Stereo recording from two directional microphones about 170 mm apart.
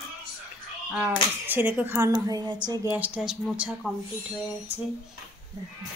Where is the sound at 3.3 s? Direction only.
5° right (ahead or behind).